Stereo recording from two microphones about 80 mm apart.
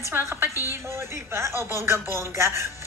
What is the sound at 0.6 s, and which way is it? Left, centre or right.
A woman's voice, right.